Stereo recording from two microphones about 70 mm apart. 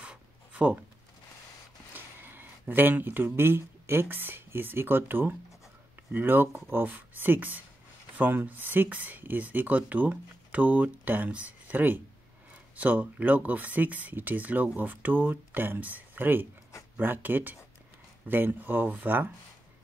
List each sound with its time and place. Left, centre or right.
0.0 s writing: centre
2.0 s speech: right